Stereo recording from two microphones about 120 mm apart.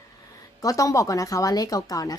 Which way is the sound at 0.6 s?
30° left (ahead or behind).